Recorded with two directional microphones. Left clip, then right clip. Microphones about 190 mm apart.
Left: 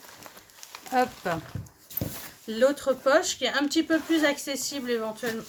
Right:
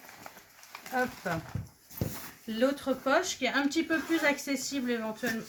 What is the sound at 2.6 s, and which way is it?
Speech, 55° left (ahead or behind).